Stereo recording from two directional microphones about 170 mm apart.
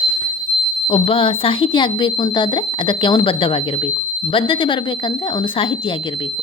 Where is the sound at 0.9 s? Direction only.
30° left (ahead or behind).